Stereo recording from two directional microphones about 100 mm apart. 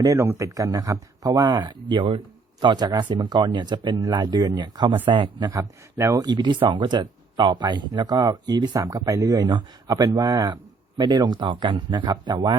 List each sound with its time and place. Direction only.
0.0 s speech: 30° right (ahead or behind); by 2.2 s 55° right (ahead or behind)
2.6 s speech: 45° right (ahead or behind)
5.0 s speech: 55° right (ahead or behind)
5.5 s speech: 30° right (ahead or behind)
6.2 s speech: 50° right (ahead or behind)
9.5 s speech: 55° right (ahead or behind)
9.9 s speech: 35° right (ahead or behind)